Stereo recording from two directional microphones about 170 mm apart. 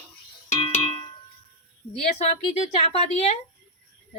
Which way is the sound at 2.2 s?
40° left (ahead or behind).